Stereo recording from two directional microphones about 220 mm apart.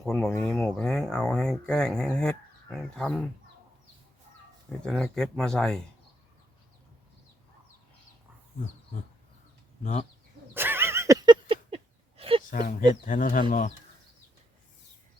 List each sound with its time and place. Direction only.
0.0 s speech: centre (ahead or behind)
4.8 s speech: 5° left (ahead or behind)
9.8 s speech: 30° left (ahead or behind)
10.5 s a sound: 10° right (ahead or behind); by 12.4 s 25° right (ahead or behind)
12.5 s speech: 35° left (ahead or behind)